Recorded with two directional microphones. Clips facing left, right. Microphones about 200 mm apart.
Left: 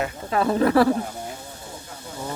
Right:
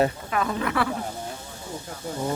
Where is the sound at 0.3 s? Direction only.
30° left (ahead or behind).